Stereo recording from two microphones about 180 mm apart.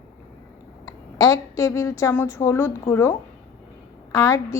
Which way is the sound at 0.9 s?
20° left (ahead or behind).